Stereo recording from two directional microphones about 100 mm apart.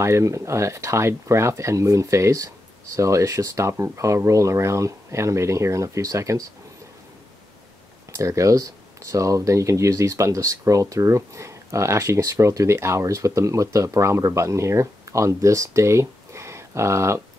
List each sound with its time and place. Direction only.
0.0 s speech: 30° right (ahead or behind)
8.1 s speech: 30° right (ahead or behind)